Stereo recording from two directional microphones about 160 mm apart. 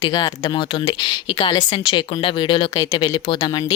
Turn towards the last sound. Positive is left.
turn(degrees=25)  # may be behind; listen again after turning